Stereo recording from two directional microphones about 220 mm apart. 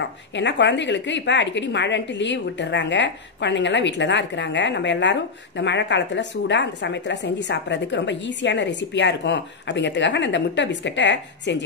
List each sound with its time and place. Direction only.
0.4 s a woman's voice: 55° left (ahead or behind)